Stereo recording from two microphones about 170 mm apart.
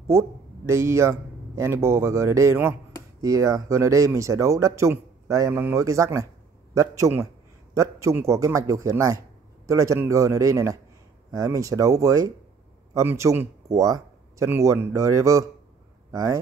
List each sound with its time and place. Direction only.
0.1 s a man's voice: 15° right (ahead or behind)